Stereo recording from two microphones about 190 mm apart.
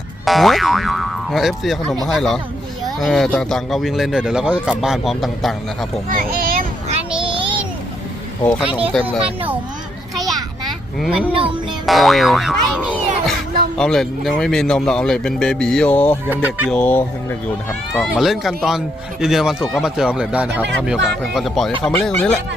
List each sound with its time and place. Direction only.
0.3 s speech: centre (ahead or behind)
6.1 s a sound: 45° right (ahead or behind)
8.9 s speech: centre (ahead or behind)
10.2 s a sound: centre (ahead or behind)
11.4 s music: centre (ahead or behind)
13.7 s speech: 5° left (ahead or behind)
16.3 s speech: 10° right (ahead or behind); by 22.4 s 5° left (ahead or behind)